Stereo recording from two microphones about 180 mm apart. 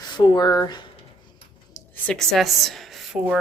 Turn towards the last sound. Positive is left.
turn(degrees=0)  # may be behind; listen again after turning